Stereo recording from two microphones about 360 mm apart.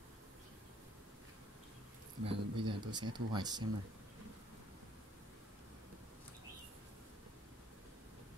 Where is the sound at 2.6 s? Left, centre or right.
Centre.